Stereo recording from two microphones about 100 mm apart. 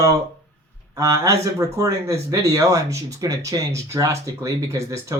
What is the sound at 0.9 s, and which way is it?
Speech, 35° right (ahead or behind).